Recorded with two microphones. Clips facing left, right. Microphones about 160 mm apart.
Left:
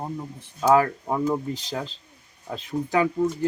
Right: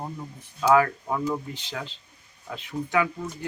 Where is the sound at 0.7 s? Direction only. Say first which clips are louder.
Even; 30° left (ahead or behind).